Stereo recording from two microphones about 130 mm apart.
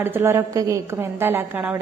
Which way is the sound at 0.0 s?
20° right (ahead or behind).